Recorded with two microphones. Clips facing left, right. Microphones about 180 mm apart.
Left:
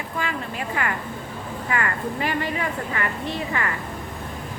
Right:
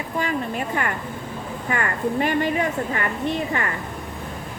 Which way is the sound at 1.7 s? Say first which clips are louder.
Right 3 dB; 45° right (ahead or behind).